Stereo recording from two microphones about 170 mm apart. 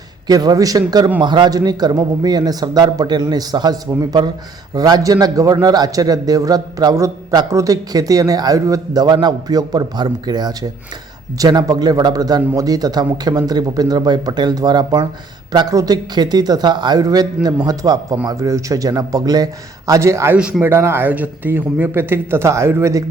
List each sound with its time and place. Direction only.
0.3 s a man's voice: 20° right (ahead or behind)